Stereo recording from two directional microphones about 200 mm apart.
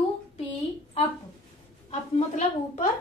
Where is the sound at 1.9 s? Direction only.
35° left (ahead or behind).